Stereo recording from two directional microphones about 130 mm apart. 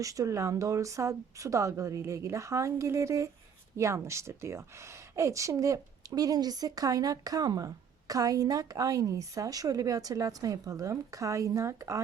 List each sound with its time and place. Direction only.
0.0 s a woman's voice: 25° right (ahead or behind)